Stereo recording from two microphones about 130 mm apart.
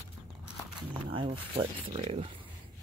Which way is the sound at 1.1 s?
45° right (ahead or behind).